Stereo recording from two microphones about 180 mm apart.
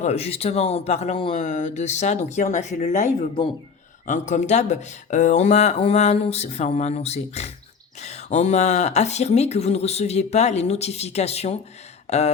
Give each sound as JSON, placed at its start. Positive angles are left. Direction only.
{"t": 0.0, "sound": "speech", "side_deg": 35}